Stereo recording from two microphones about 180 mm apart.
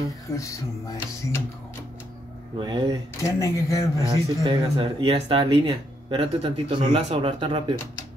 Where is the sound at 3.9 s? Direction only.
25° right (ahead or behind).